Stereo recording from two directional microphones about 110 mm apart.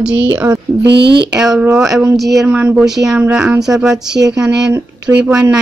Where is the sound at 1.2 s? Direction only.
5° right (ahead or behind).